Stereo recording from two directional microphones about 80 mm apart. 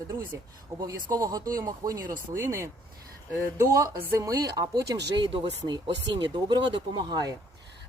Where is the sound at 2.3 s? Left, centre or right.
Right.